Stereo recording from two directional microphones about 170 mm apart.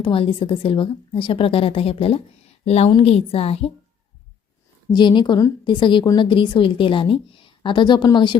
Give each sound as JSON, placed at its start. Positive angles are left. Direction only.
{"t": 0.0, "sound": "a woman's voice", "side_deg": 30}
{"t": 4.9, "sound": "a woman's voice", "side_deg": 25}